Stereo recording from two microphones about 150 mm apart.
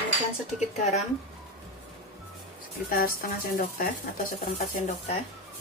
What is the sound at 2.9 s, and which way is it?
Speech, 70° left (ahead or behind).